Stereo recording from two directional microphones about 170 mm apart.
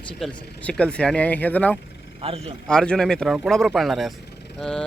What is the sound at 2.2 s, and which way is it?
Speech, 35° right (ahead or behind).